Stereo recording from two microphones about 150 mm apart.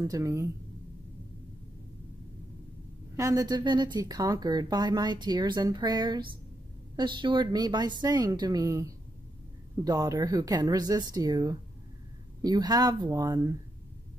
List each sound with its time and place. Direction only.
0.0 s speech: 20° right (ahead or behind)
3.2 s speech: 20° right (ahead or behind)